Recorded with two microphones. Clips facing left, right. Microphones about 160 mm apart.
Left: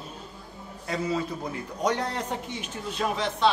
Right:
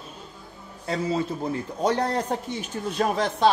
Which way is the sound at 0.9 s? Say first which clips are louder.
Right 3 dB; 30° right (ahead or behind).